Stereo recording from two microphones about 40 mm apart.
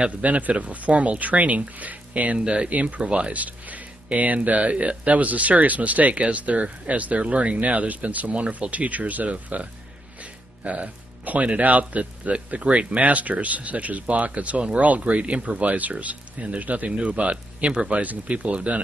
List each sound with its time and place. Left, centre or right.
0.2 s speech: right
2.3 s speech: right